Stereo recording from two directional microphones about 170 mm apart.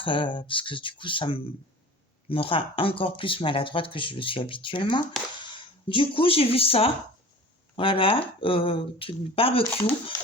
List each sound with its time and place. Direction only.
0.0 s speech: 30° left (ahead or behind)